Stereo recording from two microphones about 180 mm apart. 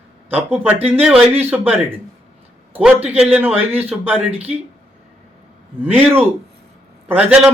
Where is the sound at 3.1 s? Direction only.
10° right (ahead or behind).